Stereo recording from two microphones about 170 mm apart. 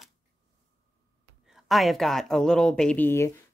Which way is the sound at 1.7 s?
Centre (ahead or behind).